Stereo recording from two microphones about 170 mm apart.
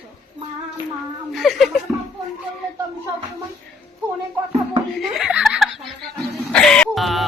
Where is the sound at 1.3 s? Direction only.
Centre (ahead or behind).